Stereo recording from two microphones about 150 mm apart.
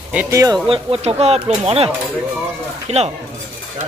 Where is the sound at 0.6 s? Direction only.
40° right (ahead or behind).